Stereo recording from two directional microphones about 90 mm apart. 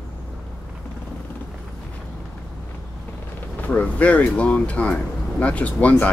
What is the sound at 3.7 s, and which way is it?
Speech, 15° left (ahead or behind).